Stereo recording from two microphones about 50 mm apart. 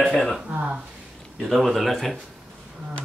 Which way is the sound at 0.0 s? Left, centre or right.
Centre.